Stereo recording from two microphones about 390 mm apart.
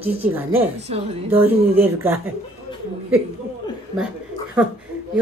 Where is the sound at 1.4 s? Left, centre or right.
Centre.